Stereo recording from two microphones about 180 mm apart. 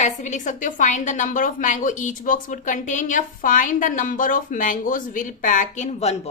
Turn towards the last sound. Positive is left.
turn(degrees=35)  # may be behind; listen again after turning